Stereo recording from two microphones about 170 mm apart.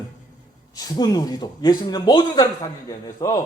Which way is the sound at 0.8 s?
25° left (ahead or behind).